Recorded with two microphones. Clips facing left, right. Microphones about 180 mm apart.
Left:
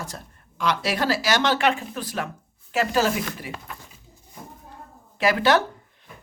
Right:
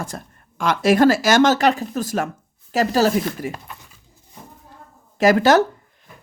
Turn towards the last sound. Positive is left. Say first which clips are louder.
# right 6 dB
turn(degrees=-45)  # may be behind; listen again after turning